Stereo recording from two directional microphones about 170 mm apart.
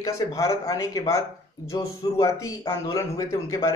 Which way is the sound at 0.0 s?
20° left (ahead or behind).